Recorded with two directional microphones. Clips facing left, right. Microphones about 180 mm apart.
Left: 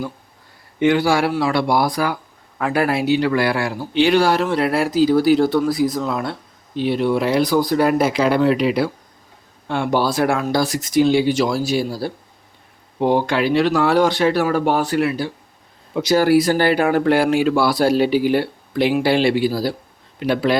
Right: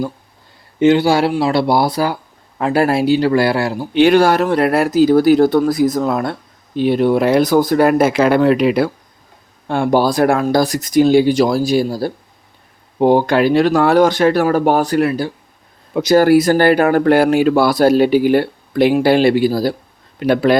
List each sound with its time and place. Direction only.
0.8 s speech: 25° right (ahead or behind)
3.9 s speech: 50° right (ahead or behind)